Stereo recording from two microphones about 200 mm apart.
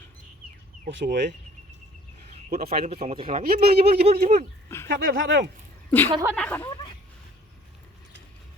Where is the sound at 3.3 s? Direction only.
50° right (ahead or behind).